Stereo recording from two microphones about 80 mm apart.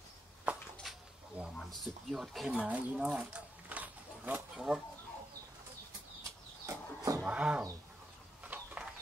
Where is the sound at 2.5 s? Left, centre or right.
Centre.